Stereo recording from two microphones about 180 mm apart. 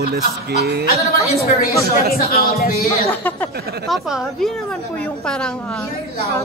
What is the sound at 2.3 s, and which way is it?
Speech, 55° left (ahead or behind).